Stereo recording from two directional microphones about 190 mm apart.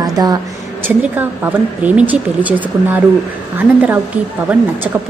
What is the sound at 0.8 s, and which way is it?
Speech, 10° right (ahead or behind).